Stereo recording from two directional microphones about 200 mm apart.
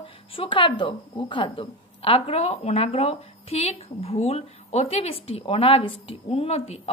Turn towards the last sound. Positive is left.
turn(degrees=30)  # may be behind; listen again after turning